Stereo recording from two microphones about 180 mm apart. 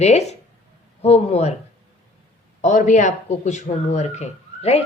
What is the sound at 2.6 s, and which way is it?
Speech, 45° left (ahead or behind).